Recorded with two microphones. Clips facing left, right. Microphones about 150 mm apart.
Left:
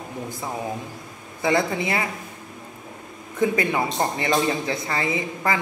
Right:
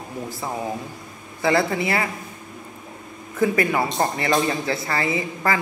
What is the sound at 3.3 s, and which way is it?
A man's voice, 20° left (ahead or behind).